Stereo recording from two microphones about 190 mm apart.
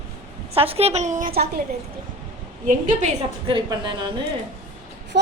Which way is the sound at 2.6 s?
40° right (ahead or behind).